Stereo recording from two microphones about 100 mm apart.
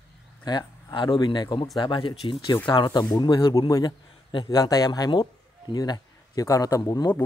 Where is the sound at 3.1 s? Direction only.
35° left (ahead or behind).